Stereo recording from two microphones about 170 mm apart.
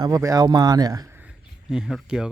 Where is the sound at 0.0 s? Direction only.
20° right (ahead or behind).